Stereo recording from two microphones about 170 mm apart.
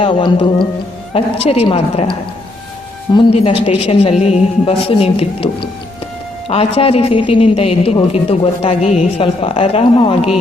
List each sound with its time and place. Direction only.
0.0 s speech: 30° left (ahead or behind)